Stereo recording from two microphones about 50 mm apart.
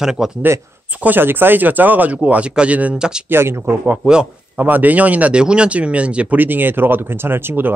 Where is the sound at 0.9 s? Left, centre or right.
Right.